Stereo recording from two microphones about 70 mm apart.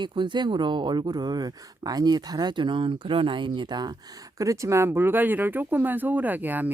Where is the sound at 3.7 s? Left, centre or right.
Right.